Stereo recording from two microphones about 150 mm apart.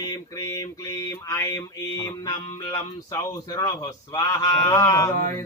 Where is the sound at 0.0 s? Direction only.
25° left (ahead or behind).